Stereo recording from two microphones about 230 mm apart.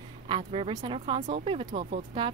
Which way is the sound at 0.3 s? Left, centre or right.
Right.